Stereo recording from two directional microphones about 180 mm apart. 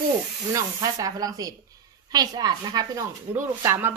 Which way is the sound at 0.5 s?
20° right (ahead or behind).